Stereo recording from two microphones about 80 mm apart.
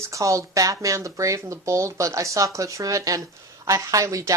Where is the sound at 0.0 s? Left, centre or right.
Right.